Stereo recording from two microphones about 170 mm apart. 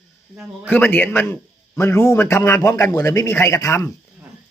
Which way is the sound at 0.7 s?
10° left (ahead or behind).